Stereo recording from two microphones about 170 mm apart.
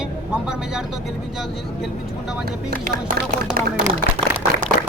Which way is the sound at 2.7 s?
65° right (ahead or behind).